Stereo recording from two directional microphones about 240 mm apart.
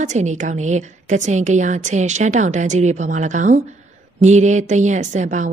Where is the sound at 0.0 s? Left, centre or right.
Right.